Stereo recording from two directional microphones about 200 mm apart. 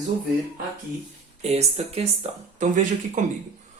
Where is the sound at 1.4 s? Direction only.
30° right (ahead or behind).